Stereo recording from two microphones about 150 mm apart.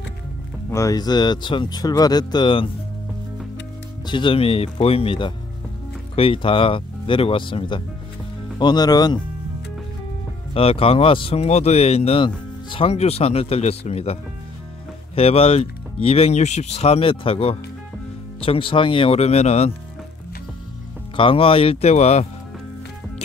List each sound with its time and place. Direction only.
0.7 s speech: 20° left (ahead or behind)
4.0 s speech: 35° left (ahead or behind)
10.5 s speech: 40° left (ahead or behind)
15.1 s speech: 40° left (ahead or behind)
21.2 s speech: 35° left (ahead or behind)